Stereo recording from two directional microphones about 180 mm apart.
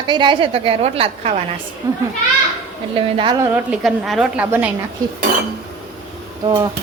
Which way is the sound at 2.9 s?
25° right (ahead or behind).